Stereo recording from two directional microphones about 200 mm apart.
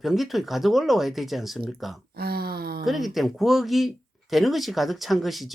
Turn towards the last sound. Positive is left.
turn(degrees=0)  # may be behind; listen again after turning